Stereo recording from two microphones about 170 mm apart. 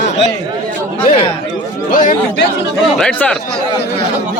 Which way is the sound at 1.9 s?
50° left (ahead or behind).